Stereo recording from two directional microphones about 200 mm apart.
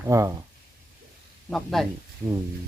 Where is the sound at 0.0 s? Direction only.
15° right (ahead or behind).